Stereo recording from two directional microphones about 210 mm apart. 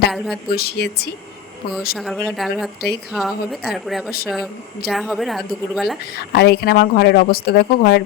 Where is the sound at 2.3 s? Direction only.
Centre (ahead or behind).